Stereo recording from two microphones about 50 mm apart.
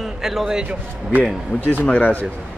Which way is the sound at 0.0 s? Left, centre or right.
Centre.